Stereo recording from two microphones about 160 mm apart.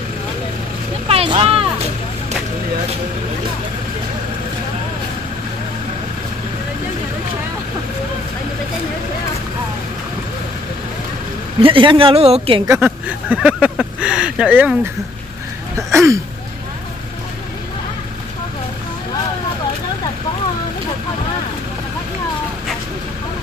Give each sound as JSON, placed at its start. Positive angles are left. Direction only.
{"t": 1.0, "sound": "vehicle", "side_deg": -35}
{"t": 11.6, "sound": "a woman's voice", "side_deg": -30}
{"t": 12.7, "sound": "speech", "side_deg": -5}
{"t": 15.9, "sound": "a sound", "side_deg": -15}